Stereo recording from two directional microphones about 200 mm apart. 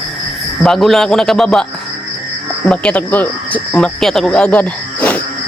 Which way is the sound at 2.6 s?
5° left (ahead or behind).